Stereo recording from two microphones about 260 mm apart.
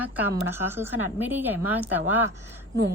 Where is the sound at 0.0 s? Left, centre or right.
Centre.